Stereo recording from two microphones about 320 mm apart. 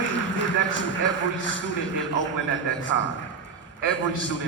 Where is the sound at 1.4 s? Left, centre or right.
Left.